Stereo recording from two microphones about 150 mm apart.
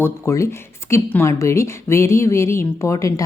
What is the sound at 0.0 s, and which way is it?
Speech, 20° left (ahead or behind).